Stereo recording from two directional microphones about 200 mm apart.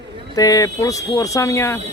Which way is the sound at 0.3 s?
15° left (ahead or behind).